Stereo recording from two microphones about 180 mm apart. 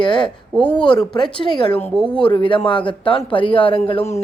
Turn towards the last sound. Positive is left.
turn(degrees=35)  # may be behind; listen again after turning